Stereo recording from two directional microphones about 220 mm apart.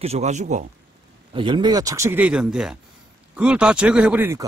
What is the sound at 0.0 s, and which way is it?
Speech, 30° right (ahead or behind).